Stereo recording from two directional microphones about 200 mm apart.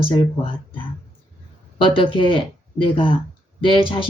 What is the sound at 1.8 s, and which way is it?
Speech, 25° left (ahead or behind).